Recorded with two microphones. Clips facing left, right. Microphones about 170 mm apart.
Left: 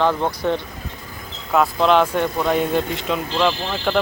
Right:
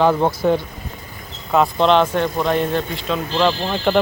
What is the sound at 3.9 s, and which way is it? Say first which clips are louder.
Speech: right 3 dB; centre (ahead or behind).